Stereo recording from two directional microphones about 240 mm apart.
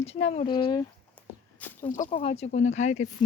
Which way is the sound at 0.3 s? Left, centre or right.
Centre.